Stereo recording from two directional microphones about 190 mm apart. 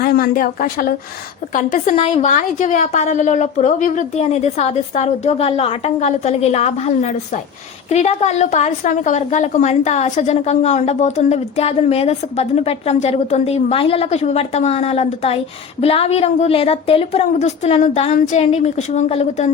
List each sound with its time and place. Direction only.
0.0 s a woman's voice: 50° left (ahead or behind); by 19.5 s 35° left (ahead or behind)